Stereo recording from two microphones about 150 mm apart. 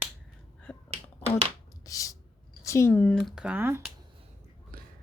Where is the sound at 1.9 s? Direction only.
20° left (ahead or behind).